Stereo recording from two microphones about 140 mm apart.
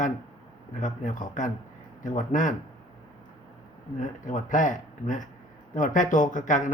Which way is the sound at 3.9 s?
65° left (ahead or behind).